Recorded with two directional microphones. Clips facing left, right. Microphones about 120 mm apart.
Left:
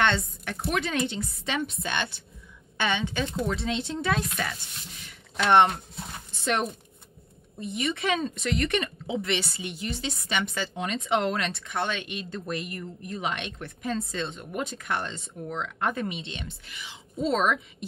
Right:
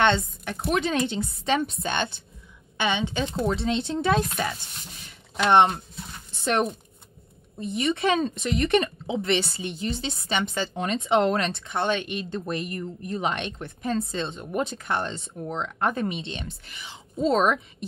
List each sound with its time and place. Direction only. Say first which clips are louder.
0.0 s speech: right 3 dB; 20° right (ahead or behind)
2.8 s a woman's voice: right 2 dB; 20° right (ahead or behind)
6.4 s a woman's voice: right 3 dB; 40° right (ahead or behind)
10.7 s speech: right 4 dB; 40° right (ahead or behind)
11.1 s speech: right 5 dB; 30° right (ahead or behind)